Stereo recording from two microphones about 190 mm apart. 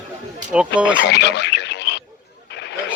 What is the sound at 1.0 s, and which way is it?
Radio, 60° left (ahead or behind).